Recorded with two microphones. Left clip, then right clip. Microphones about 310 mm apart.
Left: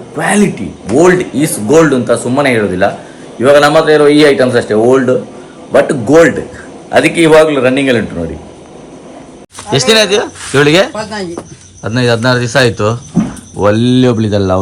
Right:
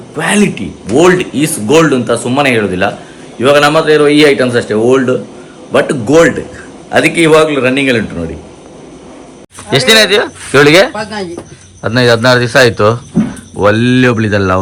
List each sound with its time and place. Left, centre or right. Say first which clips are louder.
0.2 s speech: even; centre
9.6 s speech: right 2 dB; centre
10.9 s speech: even; left
11.8 s speech: right 3 dB; centre